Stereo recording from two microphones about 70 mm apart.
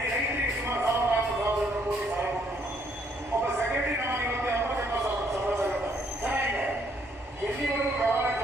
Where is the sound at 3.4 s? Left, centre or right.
Right.